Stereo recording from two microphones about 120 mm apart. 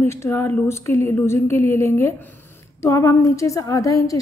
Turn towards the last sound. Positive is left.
turn(degrees=25)  # may be behind; listen again after turning